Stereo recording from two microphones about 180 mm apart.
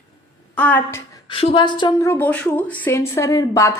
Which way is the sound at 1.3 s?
30° left (ahead or behind).